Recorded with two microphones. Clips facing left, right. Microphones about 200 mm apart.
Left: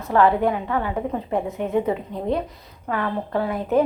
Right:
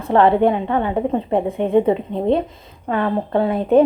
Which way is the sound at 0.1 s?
25° right (ahead or behind).